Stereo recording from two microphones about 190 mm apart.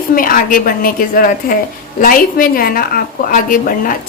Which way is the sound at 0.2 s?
45° left (ahead or behind).